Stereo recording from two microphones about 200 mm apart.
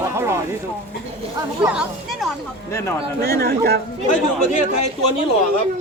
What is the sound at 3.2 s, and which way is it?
Speech, 50° right (ahead or behind).